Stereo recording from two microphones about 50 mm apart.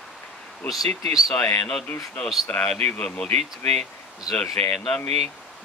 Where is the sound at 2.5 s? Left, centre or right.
Left.